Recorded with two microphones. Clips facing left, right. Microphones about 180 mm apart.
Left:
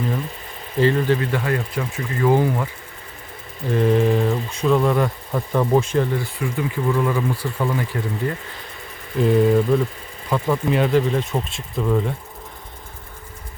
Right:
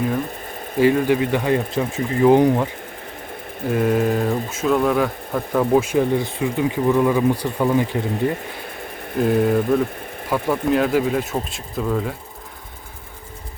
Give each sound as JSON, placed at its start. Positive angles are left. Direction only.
{"t": 0.8, "sound": "speech", "side_deg": -10}
{"t": 3.7, "sound": "speech", "side_deg": -5}
{"t": 9.2, "sound": "speech", "side_deg": 0}